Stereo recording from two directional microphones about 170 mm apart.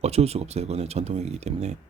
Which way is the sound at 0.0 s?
40° right (ahead or behind).